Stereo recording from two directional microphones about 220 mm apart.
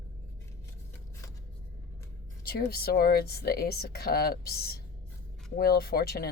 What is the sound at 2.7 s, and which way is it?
Speech, 45° left (ahead or behind).